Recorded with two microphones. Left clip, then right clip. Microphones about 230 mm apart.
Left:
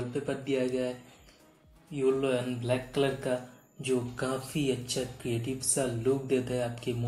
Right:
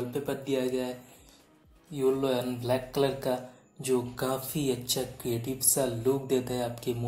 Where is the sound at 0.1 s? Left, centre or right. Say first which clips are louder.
Left 1 dB; right.